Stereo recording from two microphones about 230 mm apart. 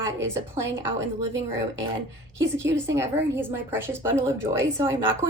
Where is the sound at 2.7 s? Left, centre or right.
Centre.